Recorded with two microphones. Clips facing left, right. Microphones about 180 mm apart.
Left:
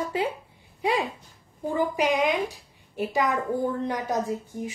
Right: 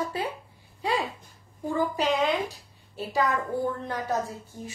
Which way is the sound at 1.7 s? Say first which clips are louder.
Left 2 dB; 15° left (ahead or behind).